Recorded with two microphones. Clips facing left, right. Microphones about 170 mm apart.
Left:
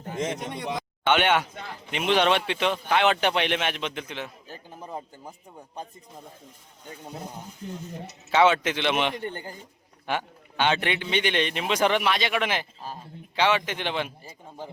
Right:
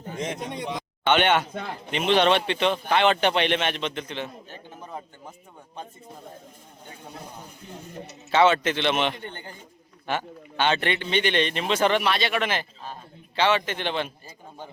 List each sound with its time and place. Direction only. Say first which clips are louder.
0.1 s a man's voice: left 1 dB; centre (ahead or behind)
4.4 s a sound: left 1 dB; 35° left (ahead or behind)
8.3 s a man's voice: right 1 dB; 10° left (ahead or behind)
9.1 s a man's voice: left 5 dB; 40° left (ahead or behind)
10.1 s a man's voice: right 1 dB; 10° left (ahead or behind)